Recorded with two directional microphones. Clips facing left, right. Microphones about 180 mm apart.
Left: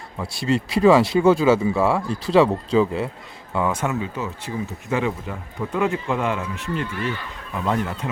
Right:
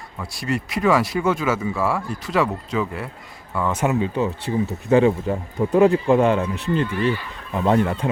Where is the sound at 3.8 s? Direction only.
30° right (ahead or behind).